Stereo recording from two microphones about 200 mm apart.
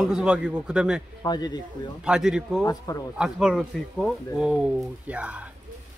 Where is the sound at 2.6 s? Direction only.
15° left (ahead or behind).